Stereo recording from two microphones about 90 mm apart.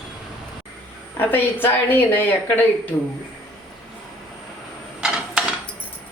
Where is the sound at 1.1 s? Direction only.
25° left (ahead or behind).